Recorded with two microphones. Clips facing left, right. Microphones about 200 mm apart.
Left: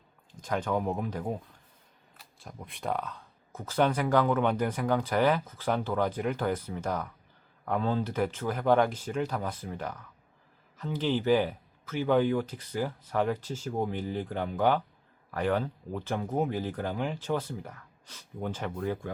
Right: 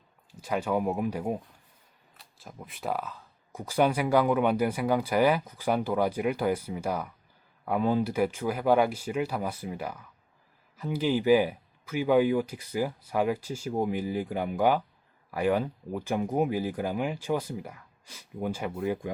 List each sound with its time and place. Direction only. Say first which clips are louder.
0.3 s speech: right 2 dB; 10° right (ahead or behind)